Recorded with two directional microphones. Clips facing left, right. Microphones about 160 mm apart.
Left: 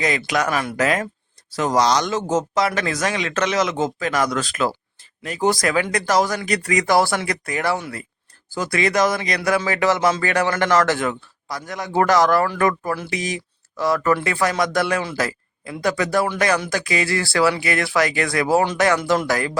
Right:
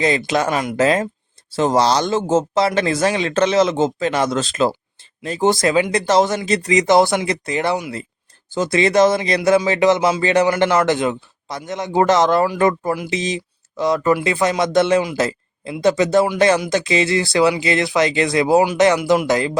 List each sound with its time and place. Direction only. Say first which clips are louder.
0.2 s speech: right 3 dB; 25° right (ahead or behind)